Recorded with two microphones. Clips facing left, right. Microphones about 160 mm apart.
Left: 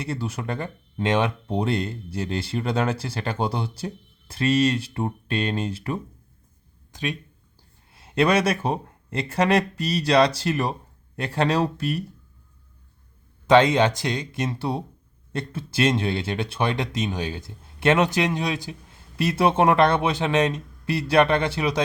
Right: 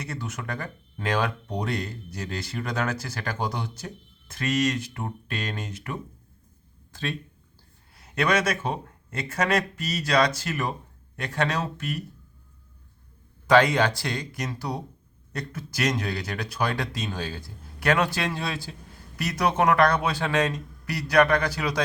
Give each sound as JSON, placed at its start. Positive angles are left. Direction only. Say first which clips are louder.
{"t": 0.0, "sound": "speech", "louder": "left 5 dB", "side_deg": 30}
{"t": 6.9, "sound": "speech", "louder": "left 2 dB", "side_deg": 15}
{"t": 7.9, "sound": "speech", "louder": "left 4 dB", "side_deg": 30}
{"t": 13.5, "sound": "speech", "louder": "left 3 dB", "side_deg": 20}